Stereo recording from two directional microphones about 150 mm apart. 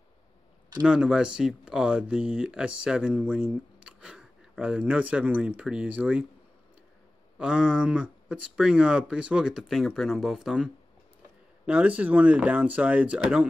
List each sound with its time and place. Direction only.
0.8 s speech: 5° right (ahead or behind)
7.3 s speech: 5° right (ahead or behind)